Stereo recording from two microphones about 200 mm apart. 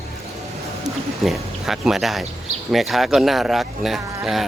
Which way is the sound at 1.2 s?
Centre (ahead or behind).